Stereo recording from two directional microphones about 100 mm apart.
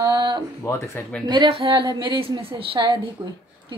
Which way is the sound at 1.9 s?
50° right (ahead or behind).